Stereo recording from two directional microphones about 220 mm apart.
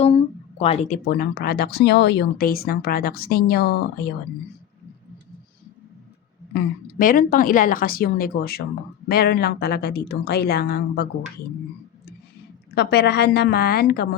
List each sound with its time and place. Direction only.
0.6 s speech: 30° left (ahead or behind); by 4.1 s 50° left (ahead or behind)
7.0 s speech: 40° left (ahead or behind)
12.7 s speech: 45° left (ahead or behind)